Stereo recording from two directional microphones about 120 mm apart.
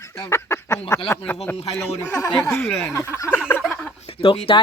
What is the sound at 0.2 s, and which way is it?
Speech, 20° left (ahead or behind).